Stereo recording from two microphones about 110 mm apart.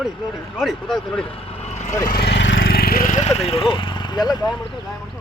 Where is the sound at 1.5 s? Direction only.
85° left.